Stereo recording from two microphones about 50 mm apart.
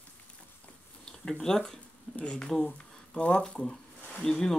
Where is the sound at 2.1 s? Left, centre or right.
Left.